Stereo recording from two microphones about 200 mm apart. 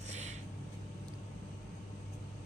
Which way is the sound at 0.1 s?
35° right (ahead or behind).